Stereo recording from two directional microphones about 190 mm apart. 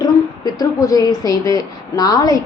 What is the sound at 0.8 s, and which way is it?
A woman's voice, 20° left (ahead or behind).